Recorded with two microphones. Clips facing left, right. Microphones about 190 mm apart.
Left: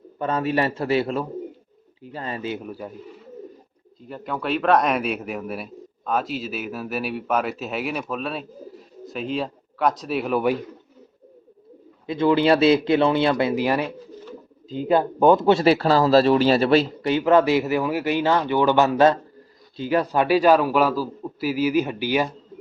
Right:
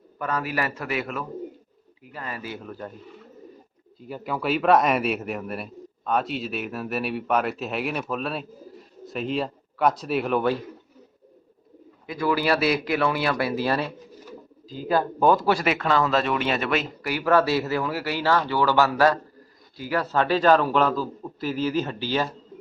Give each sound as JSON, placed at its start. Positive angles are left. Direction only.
{"t": 0.2, "sound": "speech", "side_deg": 25}
{"t": 4.1, "sound": "a man's voice", "side_deg": -5}
{"t": 12.0, "sound": "a man's voice", "side_deg": 25}